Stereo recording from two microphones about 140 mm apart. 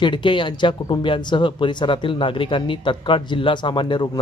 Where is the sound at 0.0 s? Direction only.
35° left (ahead or behind).